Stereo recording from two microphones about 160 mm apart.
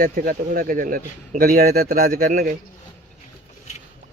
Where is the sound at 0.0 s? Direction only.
65° right (ahead or behind).